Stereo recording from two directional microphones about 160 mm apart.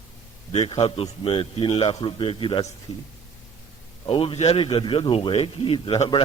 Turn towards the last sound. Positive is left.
turn(degrees=35)  # may be behind; listen again after turning